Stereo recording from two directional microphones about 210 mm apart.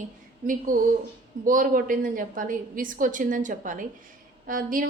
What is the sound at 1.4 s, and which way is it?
A woman's voice, 40° right (ahead or behind).